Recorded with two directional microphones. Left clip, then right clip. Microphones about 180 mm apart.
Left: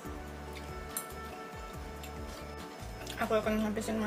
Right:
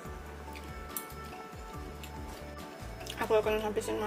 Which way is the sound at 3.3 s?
30° right (ahead or behind).